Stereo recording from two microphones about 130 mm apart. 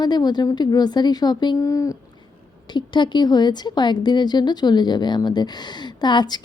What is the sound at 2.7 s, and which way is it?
A woman's voice, 35° left (ahead or behind).